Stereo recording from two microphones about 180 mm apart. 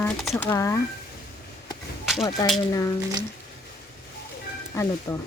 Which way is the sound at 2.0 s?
Centre (ahead or behind).